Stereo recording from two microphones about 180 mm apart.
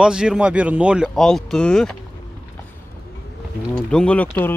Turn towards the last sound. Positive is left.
turn(degrees=10)  # may be behind; listen again after turning